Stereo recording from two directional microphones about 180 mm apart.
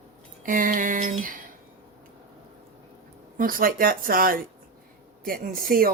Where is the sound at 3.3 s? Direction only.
50° right (ahead or behind).